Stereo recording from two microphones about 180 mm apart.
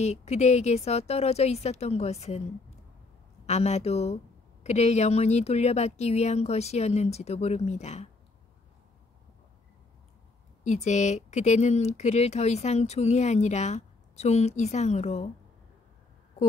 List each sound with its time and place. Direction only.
0.0 s speech: 40° left (ahead or behind)
3.4 s speech: 40° left (ahead or behind)
10.6 s speech: 40° left (ahead or behind)